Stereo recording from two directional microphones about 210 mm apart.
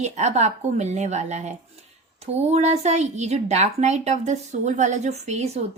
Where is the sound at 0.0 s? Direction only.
35° right (ahead or behind).